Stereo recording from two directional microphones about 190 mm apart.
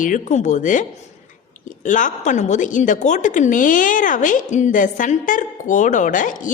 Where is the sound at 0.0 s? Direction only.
40° left (ahead or behind).